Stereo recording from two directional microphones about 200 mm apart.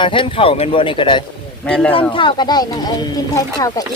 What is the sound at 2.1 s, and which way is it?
Speech, 25° left (ahead or behind).